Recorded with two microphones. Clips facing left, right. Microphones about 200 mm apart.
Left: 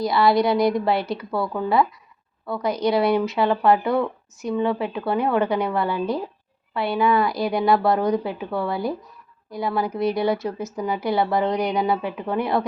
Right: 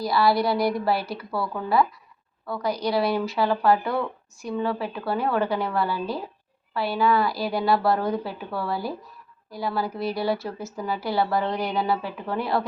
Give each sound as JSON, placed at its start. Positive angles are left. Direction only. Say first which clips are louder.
{"t": 0.0, "sound": "a woman's voice", "louder": "left 3 dB", "side_deg": 20}